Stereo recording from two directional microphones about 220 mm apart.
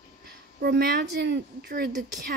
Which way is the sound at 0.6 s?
45° right (ahead or behind).